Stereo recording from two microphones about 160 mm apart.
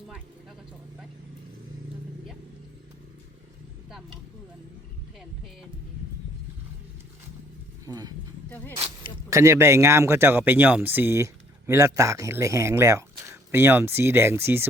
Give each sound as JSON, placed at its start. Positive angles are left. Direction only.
{"t": 7.9, "sound": "speech", "side_deg": -25}
{"t": 8.4, "sound": "a sound", "side_deg": 10}
{"t": 9.3, "sound": "speech", "side_deg": -20}